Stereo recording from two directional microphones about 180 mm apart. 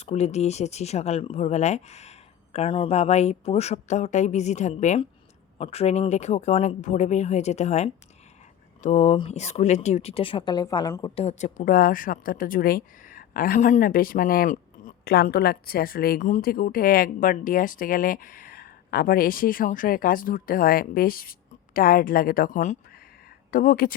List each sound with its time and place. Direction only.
0.0 s speech: 35° left (ahead or behind); by 11.1 s 20° left (ahead or behind)
11.1 s speech: 35° left (ahead or behind); by 23.9 s 55° left (ahead or behind)